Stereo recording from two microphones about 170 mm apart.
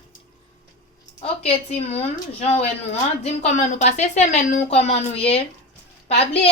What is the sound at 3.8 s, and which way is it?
A woman's voice, 40° left (ahead or behind).